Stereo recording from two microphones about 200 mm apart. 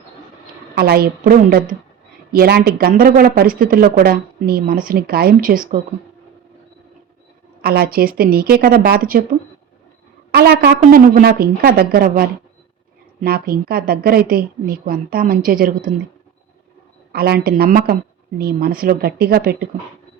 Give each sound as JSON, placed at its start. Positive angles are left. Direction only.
{"t": 0.8, "sound": "speech", "side_deg": -50}
{"t": 7.6, "sound": "a woman's voice", "side_deg": -50}
{"t": 10.3, "sound": "speech", "side_deg": -50}
{"t": 17.1, "sound": "speech", "side_deg": -50}